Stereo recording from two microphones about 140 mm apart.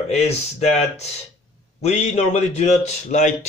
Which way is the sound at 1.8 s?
50° left (ahead or behind).